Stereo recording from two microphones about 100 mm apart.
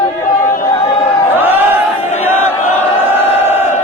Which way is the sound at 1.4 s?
20° right (ahead or behind).